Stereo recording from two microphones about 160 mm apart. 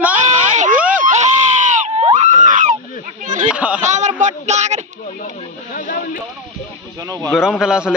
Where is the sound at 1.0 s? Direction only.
50° right (ahead or behind).